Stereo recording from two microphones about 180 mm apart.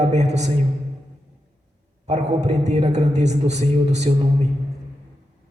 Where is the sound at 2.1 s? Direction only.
40° right (ahead or behind).